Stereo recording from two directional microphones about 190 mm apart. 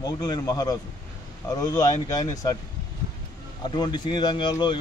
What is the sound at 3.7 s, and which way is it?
Speech, 20° left (ahead or behind).